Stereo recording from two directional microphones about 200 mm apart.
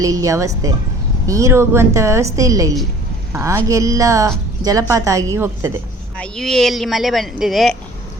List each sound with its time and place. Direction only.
0.0 s a woman's voice: 15° right (ahead or behind)
6.1 s speech: 5° left (ahead or behind)